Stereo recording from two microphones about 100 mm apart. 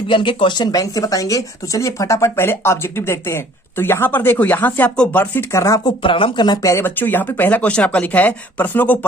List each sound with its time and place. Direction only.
0.1 s speech: 55° left (ahead or behind); by 5.8 s 30° left (ahead or behind)
5.8 s speech: 60° left (ahead or behind)
6.7 s speech: 25° left (ahead or behind)